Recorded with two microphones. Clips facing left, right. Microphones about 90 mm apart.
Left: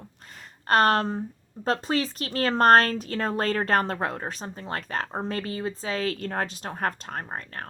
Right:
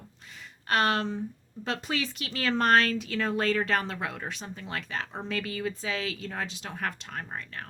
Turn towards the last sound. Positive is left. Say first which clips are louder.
# left 3 dB
turn(degrees=45)  # may be behind; listen again after turning